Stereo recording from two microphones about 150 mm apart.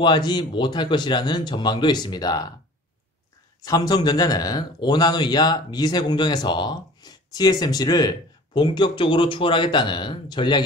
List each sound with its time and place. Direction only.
0.0 s speech: 30° left (ahead or behind)
3.6 s speech: 25° left (ahead or behind)